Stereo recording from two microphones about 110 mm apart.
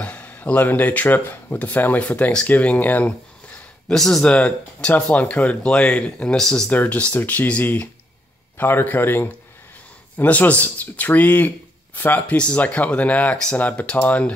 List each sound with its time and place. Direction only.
0.0 s speech: 15° left (ahead or behind)
3.9 s a man's voice: 5° left (ahead or behind)